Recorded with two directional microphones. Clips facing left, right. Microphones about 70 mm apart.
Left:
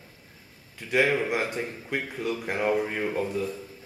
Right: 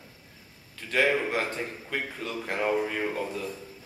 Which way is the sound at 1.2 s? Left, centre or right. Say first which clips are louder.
Left 1 dB; centre.